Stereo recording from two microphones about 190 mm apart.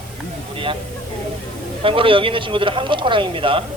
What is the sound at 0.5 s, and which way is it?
Speech, 25° right (ahead or behind).